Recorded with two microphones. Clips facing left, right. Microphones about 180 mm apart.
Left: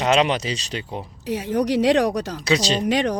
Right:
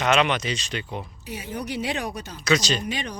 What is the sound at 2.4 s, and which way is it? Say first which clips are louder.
Speech: left 1 dB; 30° left (ahead or behind).